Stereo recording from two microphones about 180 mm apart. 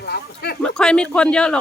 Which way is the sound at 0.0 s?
65° left (ahead or behind).